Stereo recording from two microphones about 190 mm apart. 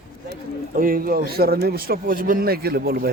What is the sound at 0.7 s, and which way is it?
Speech, 50° right (ahead or behind).